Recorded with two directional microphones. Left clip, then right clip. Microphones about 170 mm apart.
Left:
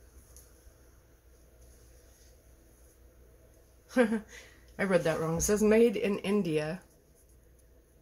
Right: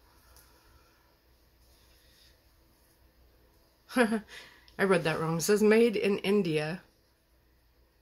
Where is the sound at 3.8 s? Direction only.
30° right (ahead or behind).